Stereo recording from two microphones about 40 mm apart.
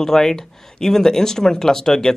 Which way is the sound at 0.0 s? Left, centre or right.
Centre.